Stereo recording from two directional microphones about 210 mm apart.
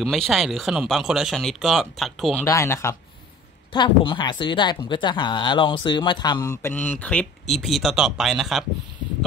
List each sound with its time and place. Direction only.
0.0 s speech: centre (ahead or behind)
2.4 s speech: 15° left (ahead or behind)